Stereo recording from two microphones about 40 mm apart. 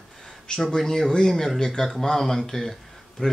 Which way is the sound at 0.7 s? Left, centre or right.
Centre.